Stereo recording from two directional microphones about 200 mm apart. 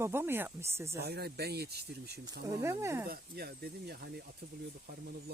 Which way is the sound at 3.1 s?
50° right (ahead or behind).